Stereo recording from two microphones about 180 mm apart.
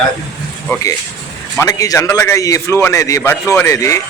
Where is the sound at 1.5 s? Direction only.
20° left (ahead or behind).